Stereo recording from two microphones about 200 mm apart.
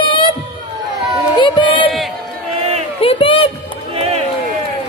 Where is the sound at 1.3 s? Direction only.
25° left (ahead or behind).